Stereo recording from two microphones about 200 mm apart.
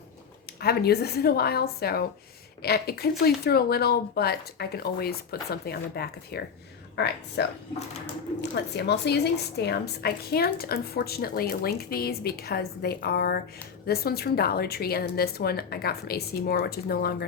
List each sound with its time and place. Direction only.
0.6 s a woman's voice: 55° left (ahead or behind)